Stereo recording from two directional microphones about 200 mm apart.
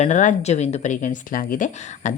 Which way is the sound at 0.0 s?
40° left (ahead or behind).